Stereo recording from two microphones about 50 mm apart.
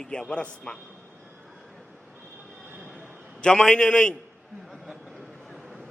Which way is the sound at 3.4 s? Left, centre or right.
Centre.